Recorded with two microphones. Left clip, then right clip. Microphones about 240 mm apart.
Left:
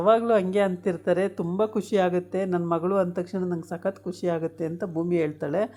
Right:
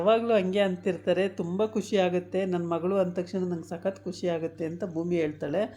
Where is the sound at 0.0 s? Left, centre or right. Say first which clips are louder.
Left 3 dB; left.